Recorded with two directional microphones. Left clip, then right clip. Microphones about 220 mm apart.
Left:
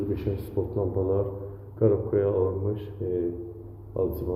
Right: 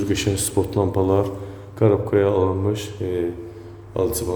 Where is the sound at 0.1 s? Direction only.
45° right (ahead or behind).